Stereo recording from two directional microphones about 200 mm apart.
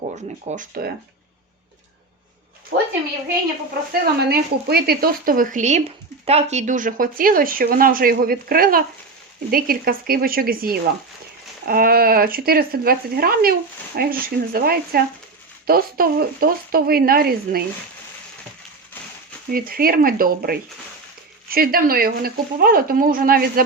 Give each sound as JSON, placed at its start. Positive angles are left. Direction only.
{"t": 0.5, "sound": "speech", "side_deg": -40}
{"t": 2.7, "sound": "a sound", "side_deg": -50}
{"t": 3.9, "sound": "speech", "side_deg": -50}
{"t": 19.5, "sound": "speech", "side_deg": -45}